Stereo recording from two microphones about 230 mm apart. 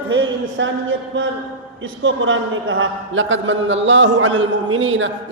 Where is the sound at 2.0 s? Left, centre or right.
Right.